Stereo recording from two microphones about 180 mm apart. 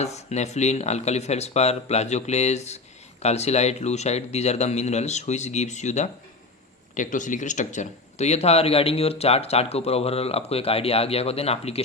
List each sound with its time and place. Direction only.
0.0 s speech: 40° left (ahead or behind)